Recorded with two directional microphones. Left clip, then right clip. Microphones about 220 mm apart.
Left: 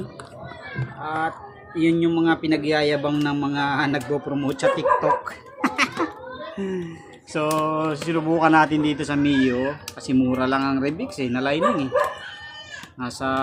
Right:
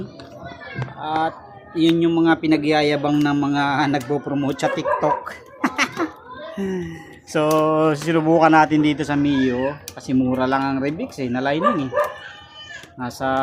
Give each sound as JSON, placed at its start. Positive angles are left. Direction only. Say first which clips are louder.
{"t": 1.0, "sound": "speech", "louder": "right 4 dB", "side_deg": -20}
{"t": 13.0, "sound": "speech", "louder": "right 3 dB", "side_deg": -15}